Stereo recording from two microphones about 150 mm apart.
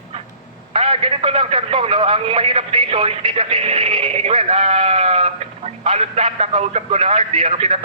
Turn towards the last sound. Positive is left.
turn(degrees=-45)  # may be behind; listen again after turning